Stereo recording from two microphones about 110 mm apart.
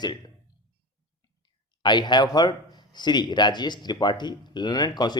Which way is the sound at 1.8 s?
40° left (ahead or behind).